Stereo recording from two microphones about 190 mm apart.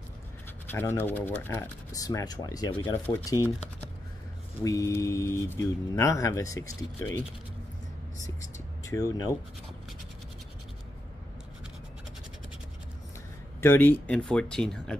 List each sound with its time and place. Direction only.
0.7 s speech: 10° left (ahead or behind)
4.6 s speech: 15° left (ahead or behind)
8.8 s speech: 20° left (ahead or behind)
13.6 s speech: 10° left (ahead or behind)